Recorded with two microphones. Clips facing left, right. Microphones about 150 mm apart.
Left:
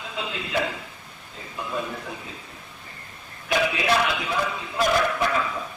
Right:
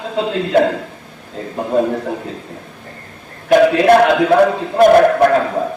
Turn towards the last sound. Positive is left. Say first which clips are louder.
# right 13 dB
turn(degrees=-55)  # may be behind; listen again after turning